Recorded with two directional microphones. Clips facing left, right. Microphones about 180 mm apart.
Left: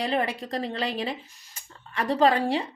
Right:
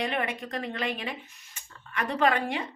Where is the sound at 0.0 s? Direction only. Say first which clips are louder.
Left 3 dB; 35° left (ahead or behind).